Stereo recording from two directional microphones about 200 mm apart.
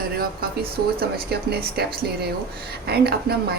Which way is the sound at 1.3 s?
50° right (ahead or behind).